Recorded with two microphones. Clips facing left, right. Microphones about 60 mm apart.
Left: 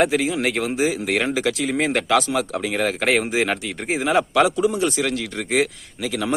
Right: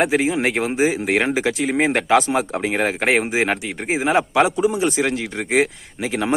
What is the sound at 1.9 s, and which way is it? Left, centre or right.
Speech, centre.